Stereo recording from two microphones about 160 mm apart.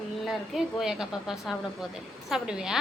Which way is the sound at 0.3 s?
Centre (ahead or behind).